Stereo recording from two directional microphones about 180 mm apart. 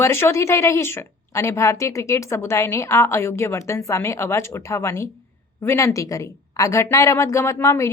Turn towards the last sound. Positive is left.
turn(degrees=15)  # may be behind; listen again after turning